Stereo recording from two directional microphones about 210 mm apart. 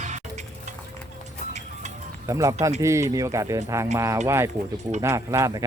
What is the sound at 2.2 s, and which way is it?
Speech, 15° right (ahead or behind).